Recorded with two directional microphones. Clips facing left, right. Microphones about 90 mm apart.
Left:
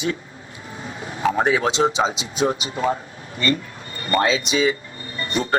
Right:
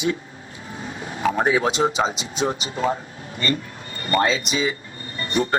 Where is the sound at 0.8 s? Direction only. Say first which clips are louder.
Even; 30° left (ahead or behind).